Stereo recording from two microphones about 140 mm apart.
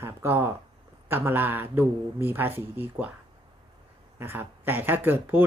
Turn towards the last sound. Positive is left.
turn(degrees=-15)  # may be behind; listen again after turning